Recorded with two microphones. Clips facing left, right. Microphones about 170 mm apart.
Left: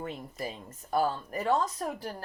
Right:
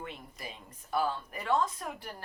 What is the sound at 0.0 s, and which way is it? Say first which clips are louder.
A woman's voice: left 7 dB; 40° left (ahead or behind).